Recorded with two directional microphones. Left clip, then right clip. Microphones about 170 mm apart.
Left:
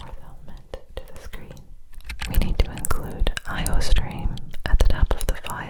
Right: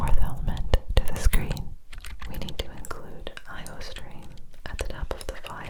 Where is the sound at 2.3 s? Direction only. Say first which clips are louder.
Left 4 dB; 25° left (ahead or behind).